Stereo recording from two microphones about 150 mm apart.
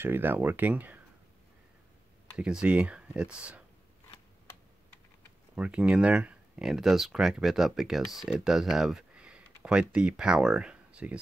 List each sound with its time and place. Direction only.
0.0 s speech: 15° right (ahead or behind)
2.3 s speech: 5° right (ahead or behind)
5.6 s speech: 5° right (ahead or behind)